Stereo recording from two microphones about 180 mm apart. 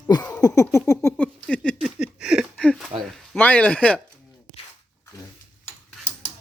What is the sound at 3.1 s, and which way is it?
Speech, 10° left (ahead or behind).